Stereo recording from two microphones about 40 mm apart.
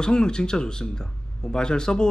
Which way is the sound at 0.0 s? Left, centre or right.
Centre.